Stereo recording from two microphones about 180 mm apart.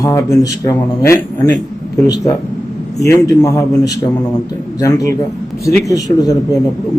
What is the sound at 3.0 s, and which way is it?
A man's voice, 20° left (ahead or behind).